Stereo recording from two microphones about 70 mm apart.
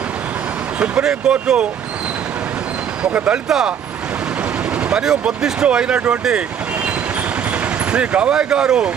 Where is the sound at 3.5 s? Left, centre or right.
Centre.